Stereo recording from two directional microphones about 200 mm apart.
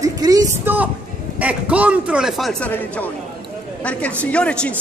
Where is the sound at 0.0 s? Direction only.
20° right (ahead or behind); by 3.1 s 10° left (ahead or behind).